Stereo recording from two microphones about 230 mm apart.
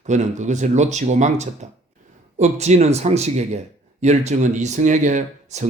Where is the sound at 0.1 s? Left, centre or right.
Right.